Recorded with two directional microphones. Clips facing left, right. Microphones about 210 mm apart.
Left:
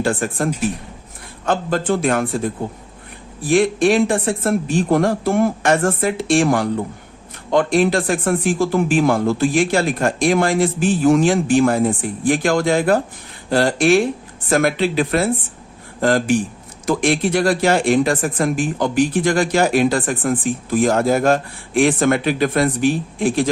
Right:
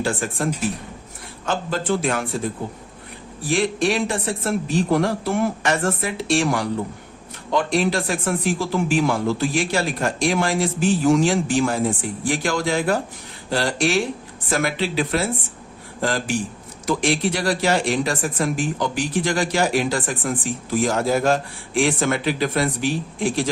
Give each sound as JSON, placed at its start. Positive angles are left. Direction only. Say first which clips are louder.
{"t": 0.0, "sound": "speech", "louder": "left 4 dB", "side_deg": 55}
{"t": 3.5, "sound": "speech", "louder": "left 6 dB", "side_deg": 50}